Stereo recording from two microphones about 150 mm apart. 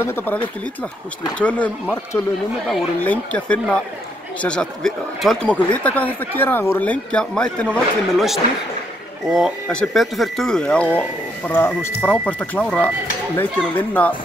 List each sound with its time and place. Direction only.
0.0 s speech: 15° left (ahead or behind)
1.4 s speech: 10° left (ahead or behind)